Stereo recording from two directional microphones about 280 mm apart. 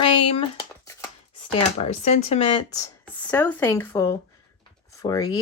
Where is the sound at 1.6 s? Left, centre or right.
Left.